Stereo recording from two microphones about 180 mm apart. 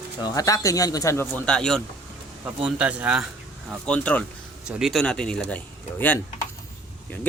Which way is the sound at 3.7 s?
5° left (ahead or behind).